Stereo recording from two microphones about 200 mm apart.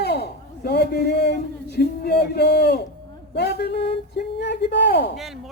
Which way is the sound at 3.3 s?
50° left (ahead or behind).